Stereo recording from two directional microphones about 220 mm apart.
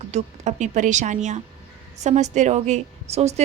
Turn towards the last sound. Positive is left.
turn(degrees=-30)  # may be behind; listen again after turning